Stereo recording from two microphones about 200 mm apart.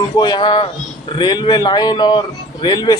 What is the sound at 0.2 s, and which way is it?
Speech, 20° left (ahead or behind).